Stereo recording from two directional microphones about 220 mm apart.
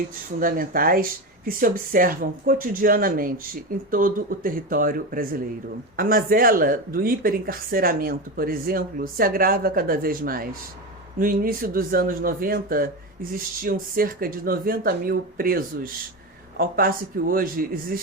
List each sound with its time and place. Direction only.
0.3 s speech: 40° right (ahead or behind)